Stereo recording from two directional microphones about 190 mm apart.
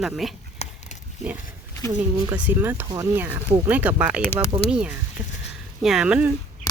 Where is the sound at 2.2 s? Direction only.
10° right (ahead or behind).